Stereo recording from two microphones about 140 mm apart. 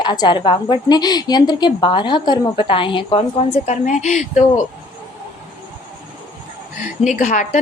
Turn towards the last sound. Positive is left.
turn(degrees=70)  # may be behind; listen again after turning